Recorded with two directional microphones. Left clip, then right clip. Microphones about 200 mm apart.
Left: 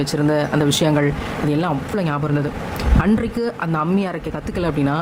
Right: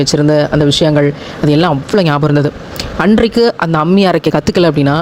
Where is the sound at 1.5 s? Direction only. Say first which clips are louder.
Right 13 dB; 40° right (ahead or behind).